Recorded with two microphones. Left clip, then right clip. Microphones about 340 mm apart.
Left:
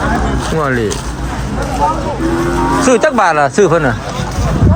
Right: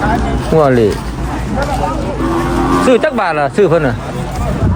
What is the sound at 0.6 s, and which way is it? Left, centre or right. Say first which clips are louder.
Speech: right 6 dB; centre.